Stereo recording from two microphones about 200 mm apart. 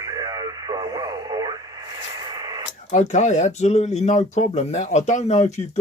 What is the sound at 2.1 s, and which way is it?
Radio, 20° right (ahead or behind).